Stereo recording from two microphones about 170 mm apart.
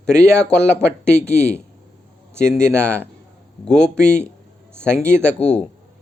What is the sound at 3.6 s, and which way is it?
Speech, 5° left (ahead or behind).